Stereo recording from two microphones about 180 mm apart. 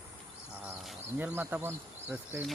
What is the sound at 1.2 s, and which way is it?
Speech, 10° right (ahead or behind).